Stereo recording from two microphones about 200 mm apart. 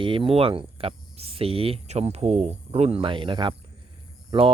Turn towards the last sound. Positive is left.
turn(degrees=-25)  # may be behind; listen again after turning